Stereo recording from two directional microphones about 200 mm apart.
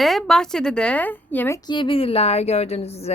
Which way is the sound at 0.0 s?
Centre (ahead or behind).